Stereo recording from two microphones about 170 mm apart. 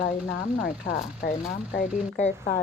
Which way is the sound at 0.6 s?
45° left (ahead or behind).